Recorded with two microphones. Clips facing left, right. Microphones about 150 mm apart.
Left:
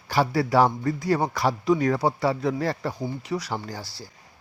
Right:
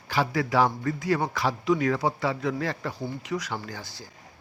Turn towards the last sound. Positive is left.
turn(degrees=35)  # may be behind; listen again after turning